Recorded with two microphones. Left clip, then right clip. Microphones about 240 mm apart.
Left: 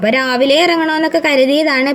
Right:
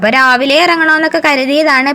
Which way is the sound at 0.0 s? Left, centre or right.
Centre.